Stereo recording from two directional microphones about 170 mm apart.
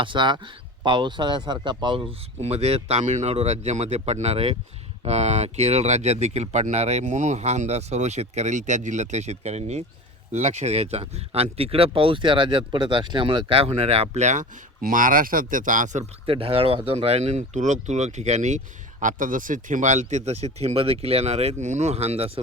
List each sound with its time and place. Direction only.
0.0 s speech: 30° right (ahead or behind)